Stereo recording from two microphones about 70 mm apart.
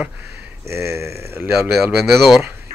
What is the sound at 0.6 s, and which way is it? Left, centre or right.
Speech, right.